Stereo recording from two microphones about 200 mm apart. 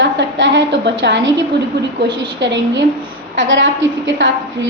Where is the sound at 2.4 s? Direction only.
60° right (ahead or behind).